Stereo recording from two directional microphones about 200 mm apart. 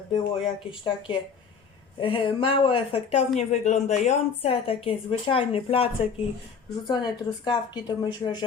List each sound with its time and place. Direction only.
0.4 s a woman's voice: 25° left (ahead or behind)